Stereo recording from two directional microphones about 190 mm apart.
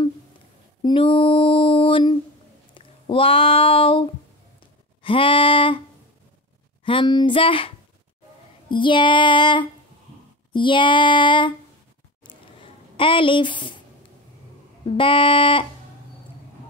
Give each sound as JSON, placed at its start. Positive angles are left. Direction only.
{"t": 0.8, "sound": "mantra", "side_deg": 30}
{"t": 2.7, "sound": "a sound", "side_deg": 30}
{"t": 5.0, "sound": "child singing", "side_deg": 30}
{"t": 6.8, "sound": "child singing", "side_deg": 25}
{"t": 12.2, "sound": "a sound", "side_deg": 25}
{"t": 14.9, "sound": "child singing", "side_deg": 25}